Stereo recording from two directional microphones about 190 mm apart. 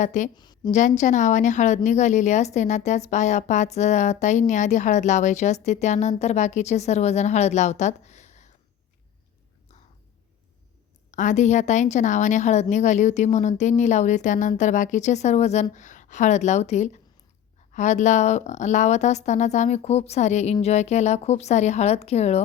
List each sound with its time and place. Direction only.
0.0 s speech: 40° left (ahead or behind)
0.3 s a woman's voice: 20° left (ahead or behind)
0.7 s speech: 40° left (ahead or behind)
11.1 s speech: 40° left (ahead or behind)